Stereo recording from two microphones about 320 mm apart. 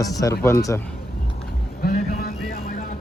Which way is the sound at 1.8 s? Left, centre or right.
Left.